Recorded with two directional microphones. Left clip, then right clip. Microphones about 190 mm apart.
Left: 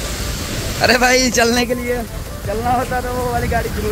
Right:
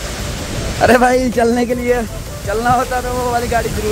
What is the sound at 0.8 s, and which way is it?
Speech, 25° right (ahead or behind).